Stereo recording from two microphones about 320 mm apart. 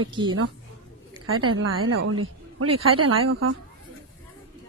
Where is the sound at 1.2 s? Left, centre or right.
Right.